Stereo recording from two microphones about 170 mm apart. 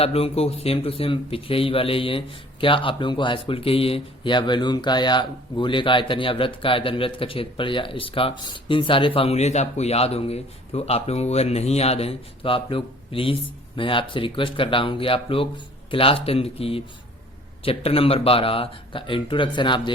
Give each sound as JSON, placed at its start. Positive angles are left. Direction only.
{"t": 0.0, "sound": "speech", "side_deg": 35}